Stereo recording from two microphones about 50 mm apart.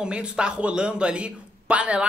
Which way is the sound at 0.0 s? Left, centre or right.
Centre.